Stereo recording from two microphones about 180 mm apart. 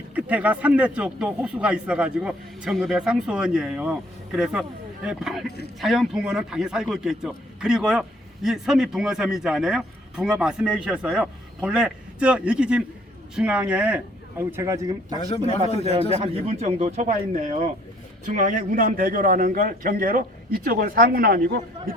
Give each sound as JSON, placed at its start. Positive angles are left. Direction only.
{"t": 0.1, "sound": "a man's voice", "side_deg": -10}
{"t": 15.8, "sound": "a man's voice", "side_deg": -35}